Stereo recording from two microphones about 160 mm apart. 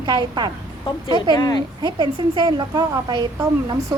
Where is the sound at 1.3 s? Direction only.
25° left (ahead or behind).